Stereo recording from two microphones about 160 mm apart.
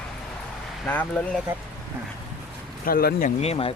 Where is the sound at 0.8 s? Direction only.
10° left (ahead or behind).